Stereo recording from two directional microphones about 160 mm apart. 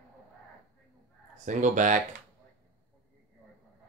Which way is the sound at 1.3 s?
50° right (ahead or behind).